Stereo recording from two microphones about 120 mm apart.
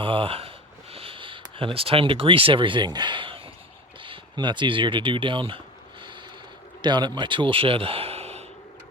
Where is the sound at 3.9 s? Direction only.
45° right (ahead or behind); by 8.5 s 60° right (ahead or behind).